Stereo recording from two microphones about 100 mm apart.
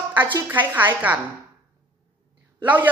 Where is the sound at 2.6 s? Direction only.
15° right (ahead or behind).